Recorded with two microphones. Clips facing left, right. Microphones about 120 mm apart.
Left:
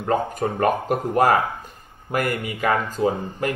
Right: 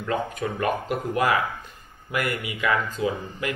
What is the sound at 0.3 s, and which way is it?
Speech, 40° left (ahead or behind).